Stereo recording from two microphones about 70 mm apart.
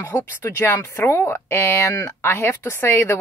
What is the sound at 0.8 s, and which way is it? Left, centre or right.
Speech, left.